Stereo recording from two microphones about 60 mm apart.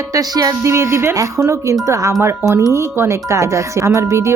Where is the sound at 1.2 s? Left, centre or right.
Right.